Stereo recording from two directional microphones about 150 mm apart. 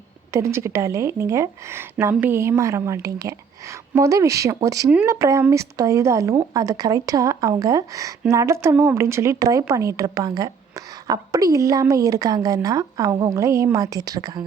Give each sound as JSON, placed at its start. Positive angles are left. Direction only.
{"t": 0.3, "sound": "speech", "side_deg": -20}